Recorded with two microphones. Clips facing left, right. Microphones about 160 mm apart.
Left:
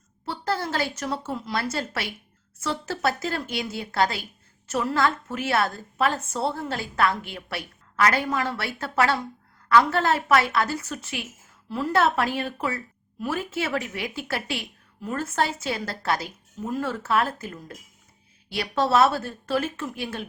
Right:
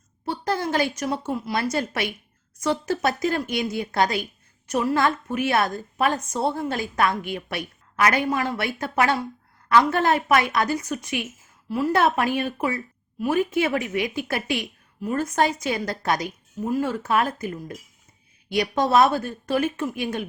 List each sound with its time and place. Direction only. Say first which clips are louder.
0.3 s a woman's voice: right 3 dB; 15° right (ahead or behind)